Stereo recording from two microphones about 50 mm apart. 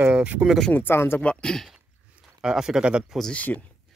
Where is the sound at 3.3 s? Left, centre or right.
Left.